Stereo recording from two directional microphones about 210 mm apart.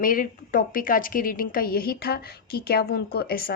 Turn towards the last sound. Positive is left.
turn(degrees=45)  # may be behind; listen again after turning